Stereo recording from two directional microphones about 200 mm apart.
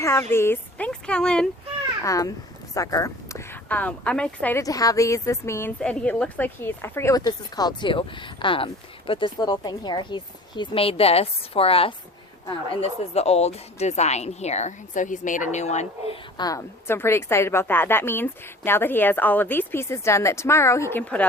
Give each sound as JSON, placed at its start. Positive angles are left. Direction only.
{"t": 0.0, "sound": "speech", "side_deg": 15}
{"t": 2.0, "sound": "speech", "side_deg": 15}
{"t": 16.4, "sound": "speech", "side_deg": 15}